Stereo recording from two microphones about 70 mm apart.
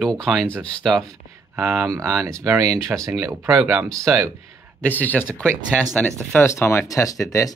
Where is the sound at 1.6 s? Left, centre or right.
Right.